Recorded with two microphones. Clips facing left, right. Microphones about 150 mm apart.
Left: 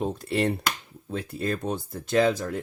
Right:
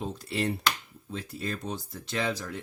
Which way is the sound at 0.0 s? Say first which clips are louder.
Left 6 dB; 55° left (ahead or behind).